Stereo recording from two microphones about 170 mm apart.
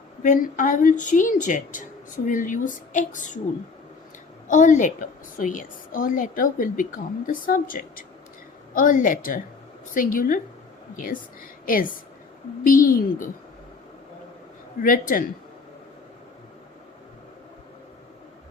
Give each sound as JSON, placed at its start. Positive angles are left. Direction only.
{"t": 0.2, "sound": "a woman's voice", "side_deg": 50}
{"t": 4.4, "sound": "a woman's voice", "side_deg": 50}
{"t": 14.8, "sound": "a woman's voice", "side_deg": 55}